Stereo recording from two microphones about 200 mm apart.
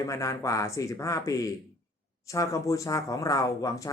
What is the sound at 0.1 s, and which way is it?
Speech, 15° left (ahead or behind).